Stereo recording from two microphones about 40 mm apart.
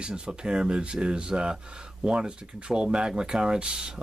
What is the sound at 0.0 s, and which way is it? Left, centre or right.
Speech, right.